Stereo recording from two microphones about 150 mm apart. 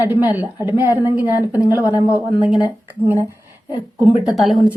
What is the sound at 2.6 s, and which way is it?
Speech, 15° right (ahead or behind).